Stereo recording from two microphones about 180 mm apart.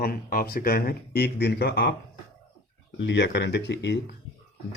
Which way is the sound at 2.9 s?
75° left (ahead or behind).